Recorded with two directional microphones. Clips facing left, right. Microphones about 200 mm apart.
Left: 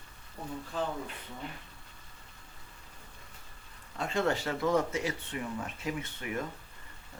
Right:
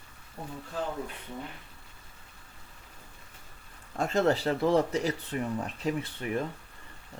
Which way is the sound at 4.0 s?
40° right (ahead or behind).